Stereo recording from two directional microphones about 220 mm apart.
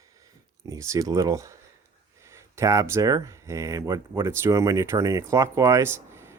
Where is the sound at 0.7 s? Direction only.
15° right (ahead or behind).